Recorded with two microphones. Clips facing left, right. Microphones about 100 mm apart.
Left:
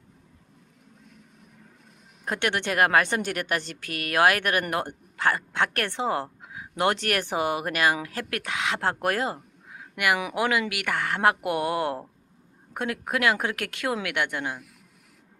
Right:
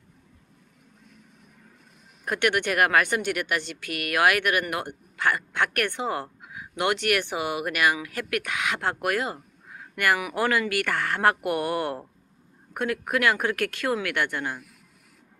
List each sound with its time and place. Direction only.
2.2 s speech: 25° left (ahead or behind)
9.6 s a sound: 15° left (ahead or behind)
10.3 s speech: 15° left (ahead or behind)